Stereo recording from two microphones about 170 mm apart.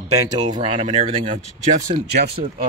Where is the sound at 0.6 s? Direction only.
40° right (ahead or behind).